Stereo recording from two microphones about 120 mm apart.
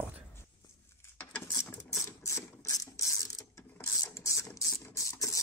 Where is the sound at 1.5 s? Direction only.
25° left (ahead or behind).